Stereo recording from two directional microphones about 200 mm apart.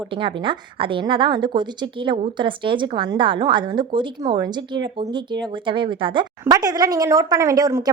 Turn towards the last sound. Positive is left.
turn(degrees=-20)  # may be behind; listen again after turning